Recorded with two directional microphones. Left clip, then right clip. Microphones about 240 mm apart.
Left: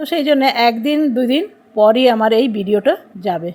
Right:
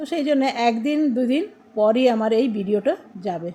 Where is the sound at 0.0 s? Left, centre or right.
Centre.